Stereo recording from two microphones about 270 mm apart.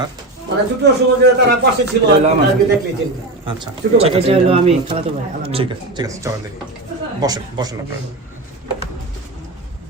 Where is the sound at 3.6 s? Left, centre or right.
Right.